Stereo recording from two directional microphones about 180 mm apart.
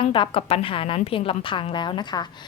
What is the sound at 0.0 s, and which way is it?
A woman's voice, 30° left (ahead or behind).